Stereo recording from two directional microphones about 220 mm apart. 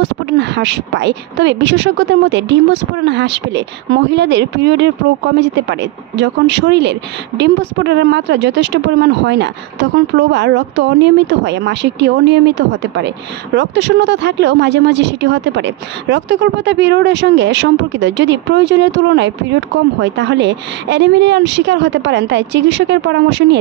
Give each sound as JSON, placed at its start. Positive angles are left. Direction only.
{"t": 0.0, "sound": "speech", "side_deg": -55}